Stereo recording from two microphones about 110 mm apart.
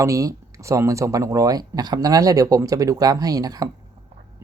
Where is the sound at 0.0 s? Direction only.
30° right (ahead or behind).